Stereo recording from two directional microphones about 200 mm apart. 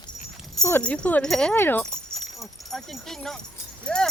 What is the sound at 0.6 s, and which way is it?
Speech, 10° left (ahead or behind).